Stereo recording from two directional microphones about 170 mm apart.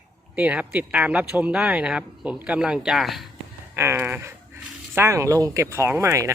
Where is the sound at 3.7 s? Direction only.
15° right (ahead or behind).